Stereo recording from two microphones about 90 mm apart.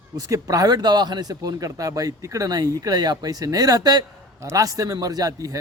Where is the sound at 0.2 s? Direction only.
40° right (ahead or behind).